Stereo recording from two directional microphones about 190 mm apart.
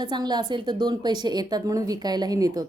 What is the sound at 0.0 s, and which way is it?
A woman's voice, 20° right (ahead or behind).